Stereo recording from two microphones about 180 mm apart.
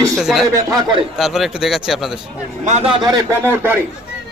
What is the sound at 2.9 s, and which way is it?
Speech, 25° right (ahead or behind).